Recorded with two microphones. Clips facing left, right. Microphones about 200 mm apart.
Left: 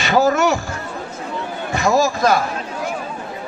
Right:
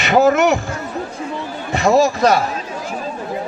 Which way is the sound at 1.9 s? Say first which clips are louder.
Right 3 dB; 30° right (ahead or behind).